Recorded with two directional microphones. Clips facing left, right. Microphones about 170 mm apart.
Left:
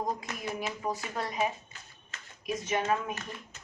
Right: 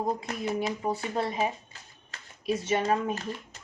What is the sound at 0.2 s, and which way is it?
A woman's voice, 30° right (ahead or behind).